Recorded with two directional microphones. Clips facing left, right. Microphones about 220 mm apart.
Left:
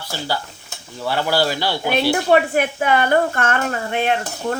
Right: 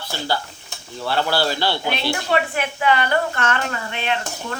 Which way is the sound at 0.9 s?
10° left (ahead or behind).